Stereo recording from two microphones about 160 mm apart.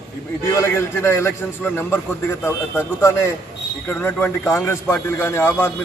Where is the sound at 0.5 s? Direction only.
15° left (ahead or behind).